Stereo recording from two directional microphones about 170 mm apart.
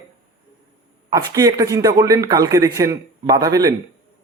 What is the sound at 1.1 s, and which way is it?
Speech, 20° right (ahead or behind).